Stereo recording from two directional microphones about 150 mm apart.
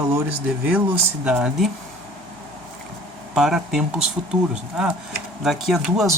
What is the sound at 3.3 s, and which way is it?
Speech, 5° right (ahead or behind).